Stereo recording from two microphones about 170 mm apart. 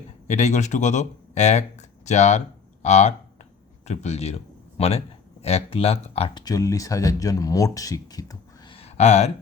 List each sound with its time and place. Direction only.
0.3 s a man's voice: 45° left (ahead or behind)